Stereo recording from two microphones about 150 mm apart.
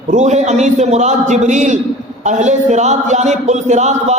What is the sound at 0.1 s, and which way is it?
A man's voice, 50° right (ahead or behind).